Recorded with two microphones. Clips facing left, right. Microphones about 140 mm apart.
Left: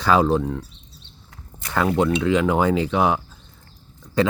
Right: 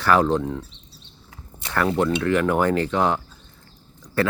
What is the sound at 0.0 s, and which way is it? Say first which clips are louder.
Speech: left 1 dB; 15° left (ahead or behind).